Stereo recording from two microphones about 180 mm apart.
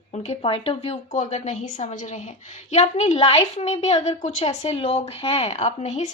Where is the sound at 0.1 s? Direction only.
35° left (ahead or behind).